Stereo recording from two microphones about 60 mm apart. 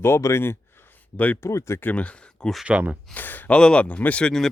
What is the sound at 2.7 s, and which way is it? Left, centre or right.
Speech, right.